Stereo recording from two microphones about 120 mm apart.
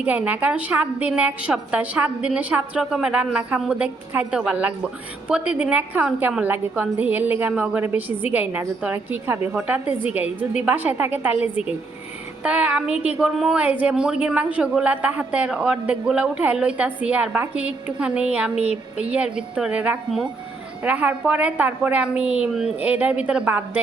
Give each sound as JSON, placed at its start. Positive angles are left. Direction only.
{"t": 0.0, "sound": "a woman's voice", "side_deg": -10}